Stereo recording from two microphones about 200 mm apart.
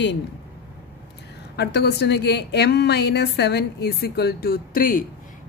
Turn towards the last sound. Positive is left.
turn(degrees=45)  # may be behind; listen again after turning